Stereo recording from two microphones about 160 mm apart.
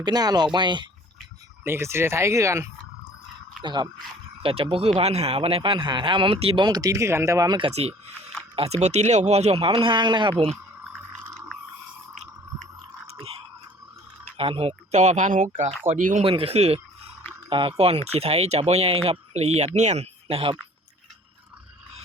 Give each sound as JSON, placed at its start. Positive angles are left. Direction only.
{"t": 0.0, "sound": "speech", "side_deg": -25}
{"t": 1.6, "sound": "speech", "side_deg": -15}
{"t": 7.7, "sound": "speech", "side_deg": -40}
{"t": 13.1, "sound": "chewing", "side_deg": -35}
{"t": 14.3, "sound": "speech", "side_deg": -35}
{"t": 14.9, "sound": "speech", "side_deg": -50}
{"t": 16.2, "sound": "speech", "side_deg": -35}